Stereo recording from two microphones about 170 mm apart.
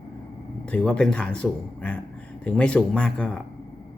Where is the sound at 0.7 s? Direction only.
5° left (ahead or behind).